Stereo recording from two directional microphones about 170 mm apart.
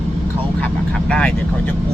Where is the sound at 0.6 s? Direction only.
5° left (ahead or behind).